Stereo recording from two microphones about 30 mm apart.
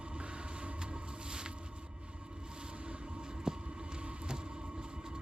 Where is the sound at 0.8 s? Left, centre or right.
Right.